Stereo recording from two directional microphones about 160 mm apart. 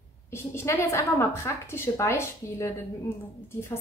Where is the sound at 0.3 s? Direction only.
15° left (ahead or behind).